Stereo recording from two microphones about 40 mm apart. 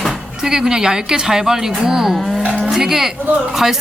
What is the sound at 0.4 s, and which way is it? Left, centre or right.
A woman's voice, centre.